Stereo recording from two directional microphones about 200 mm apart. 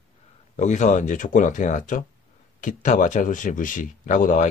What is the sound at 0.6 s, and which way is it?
Speech, 35° left (ahead or behind).